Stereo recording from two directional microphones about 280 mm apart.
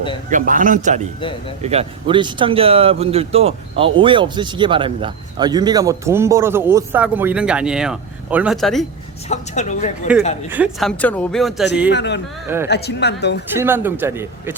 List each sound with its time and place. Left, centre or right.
0.3 s speech: right
1.2 s speech: centre
1.6 s speech: right; by 8.9 s centre
9.3 s speech: left
10.5 s speech: centre
11.9 s speech: left
13.6 s speech: centre